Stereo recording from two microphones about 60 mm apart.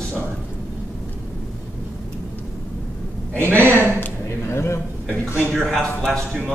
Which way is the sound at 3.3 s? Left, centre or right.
Right.